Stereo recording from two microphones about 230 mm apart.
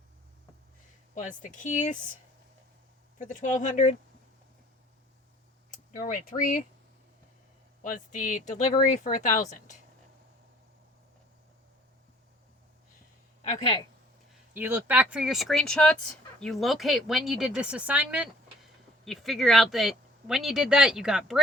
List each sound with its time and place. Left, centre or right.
1.4 s speech: left
3.2 s speech: left
5.9 s speech: left
7.8 s speech: left
13.5 s speech: left
14.5 s speech: centre